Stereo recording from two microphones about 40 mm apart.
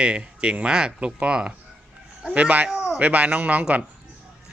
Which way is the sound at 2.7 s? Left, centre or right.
Centre.